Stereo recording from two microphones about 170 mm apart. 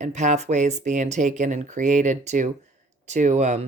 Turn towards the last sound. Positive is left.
turn(degrees=-40)  # may be behind; listen again after turning